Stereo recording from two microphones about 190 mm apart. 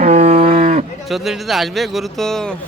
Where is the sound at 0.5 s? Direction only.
45° right (ahead or behind).